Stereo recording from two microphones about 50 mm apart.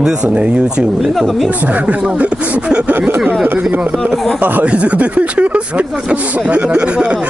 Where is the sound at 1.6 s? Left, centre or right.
Right.